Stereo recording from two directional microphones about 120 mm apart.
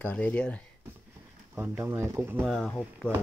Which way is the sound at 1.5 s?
20° right (ahead or behind).